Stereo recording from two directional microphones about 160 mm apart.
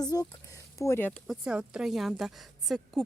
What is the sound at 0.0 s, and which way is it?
Speech, 25° left (ahead or behind).